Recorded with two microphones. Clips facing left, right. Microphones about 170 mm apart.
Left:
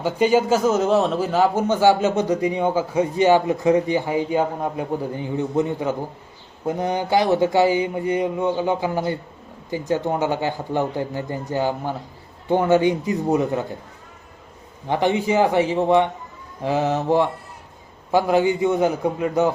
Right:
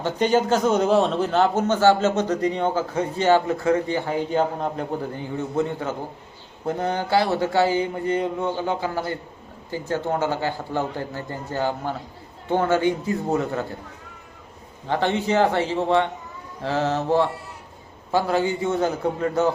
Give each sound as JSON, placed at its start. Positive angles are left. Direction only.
{"t": 0.0, "sound": "a man's voice", "side_deg": 10}
{"t": 14.8, "sound": "a man's voice", "side_deg": 15}